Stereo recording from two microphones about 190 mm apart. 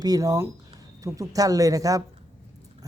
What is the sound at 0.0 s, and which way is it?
Speech, 20° right (ahead or behind).